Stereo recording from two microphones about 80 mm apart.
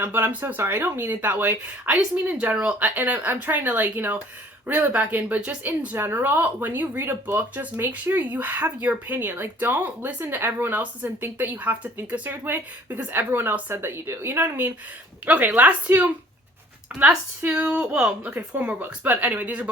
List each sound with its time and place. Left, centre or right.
0.0 s a woman's voice: right